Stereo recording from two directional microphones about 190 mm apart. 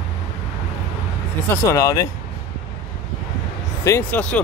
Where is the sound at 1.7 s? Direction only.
15° left (ahead or behind).